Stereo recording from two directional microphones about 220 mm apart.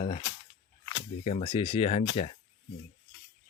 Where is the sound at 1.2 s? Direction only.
25° left (ahead or behind).